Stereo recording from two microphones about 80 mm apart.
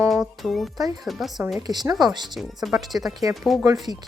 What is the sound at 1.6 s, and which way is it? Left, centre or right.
Speech, right.